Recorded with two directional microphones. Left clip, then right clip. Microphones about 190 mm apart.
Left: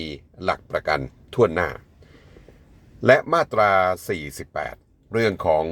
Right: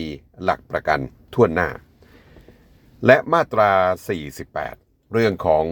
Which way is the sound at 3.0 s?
30° right (ahead or behind).